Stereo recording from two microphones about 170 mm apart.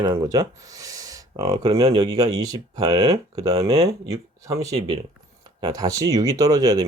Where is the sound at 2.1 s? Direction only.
20° right (ahead or behind).